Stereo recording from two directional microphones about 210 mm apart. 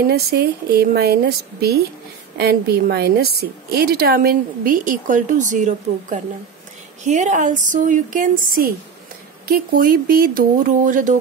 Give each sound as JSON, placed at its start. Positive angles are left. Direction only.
{"t": 0.0, "sound": "a woman's voice", "side_deg": -50}